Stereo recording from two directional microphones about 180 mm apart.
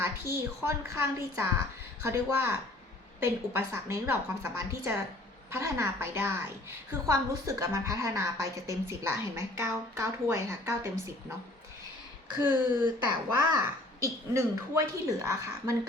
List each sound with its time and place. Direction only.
0.0 s a woman's voice: 15° right (ahead or behind)
12.8 s a woman's voice: 25° right (ahead or behind)